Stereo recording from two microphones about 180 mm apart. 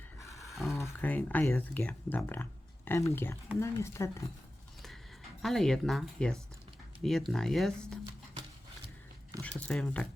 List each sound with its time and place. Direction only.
0.4 s a sound: centre (ahead or behind)
0.8 s speech: 10° left (ahead or behind)
5.4 s speech: centre (ahead or behind)
9.4 s speech: 5° left (ahead or behind)